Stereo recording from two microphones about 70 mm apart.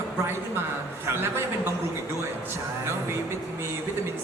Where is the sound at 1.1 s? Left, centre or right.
Right.